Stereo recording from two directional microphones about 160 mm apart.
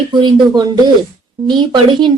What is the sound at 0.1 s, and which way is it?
A woman's voice, 30° right (ahead or behind).